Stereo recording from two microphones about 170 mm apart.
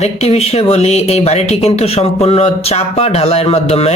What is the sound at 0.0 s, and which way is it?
Speech, 40° left (ahead or behind).